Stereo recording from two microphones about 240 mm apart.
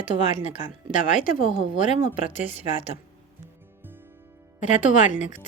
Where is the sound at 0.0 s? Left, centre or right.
Left.